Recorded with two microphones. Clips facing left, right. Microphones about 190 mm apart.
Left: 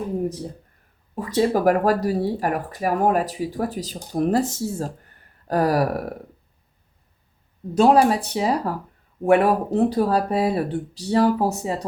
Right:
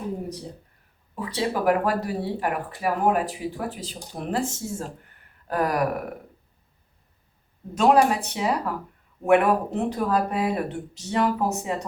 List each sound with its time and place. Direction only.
1.1 s speech: 45° left (ahead or behind)
7.8 s speech: 35° left (ahead or behind)